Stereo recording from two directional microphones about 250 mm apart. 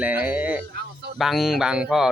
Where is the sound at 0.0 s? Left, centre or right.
Centre.